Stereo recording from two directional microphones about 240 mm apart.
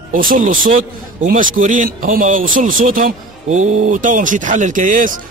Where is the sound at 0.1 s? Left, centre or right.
Right.